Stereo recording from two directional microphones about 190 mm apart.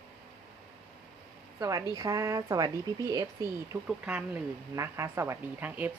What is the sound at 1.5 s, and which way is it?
A woman's voice, 15° right (ahead or behind).